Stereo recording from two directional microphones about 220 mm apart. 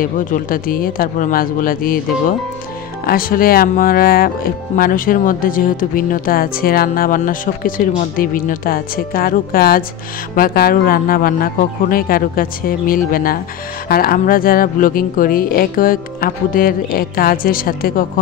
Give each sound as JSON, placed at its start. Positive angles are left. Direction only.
{"t": 0.0, "sound": "speech", "side_deg": 40}